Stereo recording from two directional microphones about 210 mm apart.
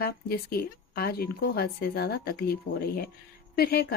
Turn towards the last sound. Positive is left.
turn(degrees=45)  # may be behind; listen again after turning